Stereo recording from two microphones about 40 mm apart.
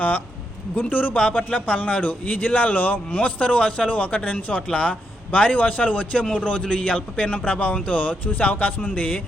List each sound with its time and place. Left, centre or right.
0.8 s speech: left
1.2 s a man's voice: left
3.2 s a man's voice: left